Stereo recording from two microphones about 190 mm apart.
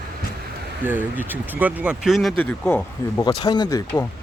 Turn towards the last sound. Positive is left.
turn(degrees=20)  # may be behind; listen again after turning